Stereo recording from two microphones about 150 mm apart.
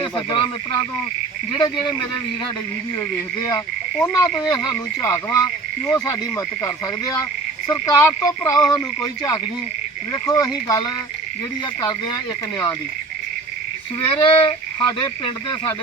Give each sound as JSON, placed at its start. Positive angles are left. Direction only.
{"t": 0.0, "sound": "speech", "side_deg": 30}
{"t": 4.0, "sound": "frog", "side_deg": 25}
{"t": 10.1, "sound": "frog", "side_deg": 25}
{"t": 14.2, "sound": "speech", "side_deg": 35}